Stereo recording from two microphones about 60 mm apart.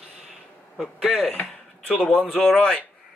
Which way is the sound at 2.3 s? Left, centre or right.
Centre.